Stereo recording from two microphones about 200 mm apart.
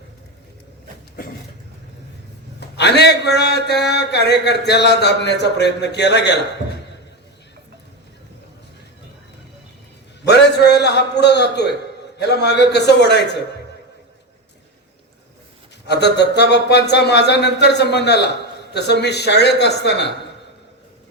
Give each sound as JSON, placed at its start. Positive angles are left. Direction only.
{"t": 2.6, "sound": "a man's voice", "side_deg": 55}
{"t": 10.2, "sound": "a sound", "side_deg": 55}
{"t": 12.2, "sound": "speech", "side_deg": 55}
{"t": 15.9, "sound": "speech", "side_deg": 55}